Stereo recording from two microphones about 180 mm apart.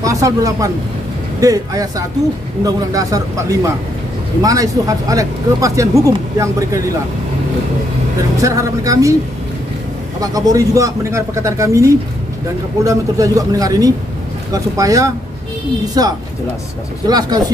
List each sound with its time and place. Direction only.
0.0 s speech: 20° right (ahead or behind)
8.4 s speech: 20° right (ahead or behind)
10.2 s speech: 20° right (ahead or behind)